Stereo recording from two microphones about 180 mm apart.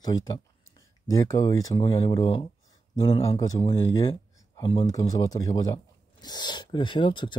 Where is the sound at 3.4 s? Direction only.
20° left (ahead or behind).